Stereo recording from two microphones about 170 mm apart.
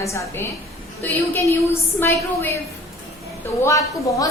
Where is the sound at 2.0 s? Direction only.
15° left (ahead or behind).